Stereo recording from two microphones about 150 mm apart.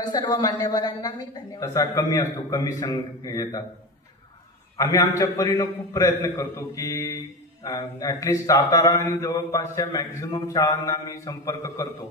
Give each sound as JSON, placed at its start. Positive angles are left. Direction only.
{"t": 0.0, "sound": "mantra", "side_deg": 30}
{"t": 4.7, "sound": "mantra", "side_deg": 25}